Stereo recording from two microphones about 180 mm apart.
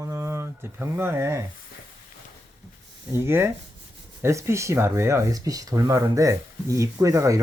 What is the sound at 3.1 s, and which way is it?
Speech, 15° right (ahead or behind).